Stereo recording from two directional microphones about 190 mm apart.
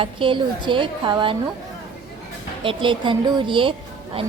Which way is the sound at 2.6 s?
25° right (ahead or behind).